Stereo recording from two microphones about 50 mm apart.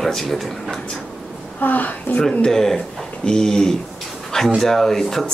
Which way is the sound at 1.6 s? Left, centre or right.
Left.